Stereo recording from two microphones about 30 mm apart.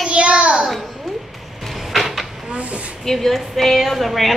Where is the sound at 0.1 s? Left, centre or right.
Right.